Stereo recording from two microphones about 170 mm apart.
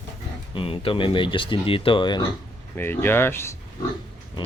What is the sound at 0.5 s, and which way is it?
Speech, 35° left (ahead or behind).